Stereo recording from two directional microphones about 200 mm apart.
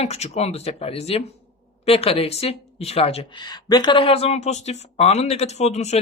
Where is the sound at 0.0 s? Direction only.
30° left (ahead or behind).